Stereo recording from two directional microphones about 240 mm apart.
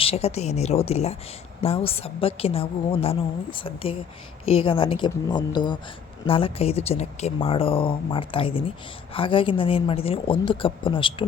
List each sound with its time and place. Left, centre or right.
0.0 s speech: left